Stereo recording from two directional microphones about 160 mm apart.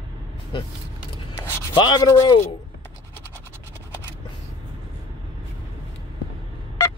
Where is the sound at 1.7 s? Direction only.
30° left (ahead or behind).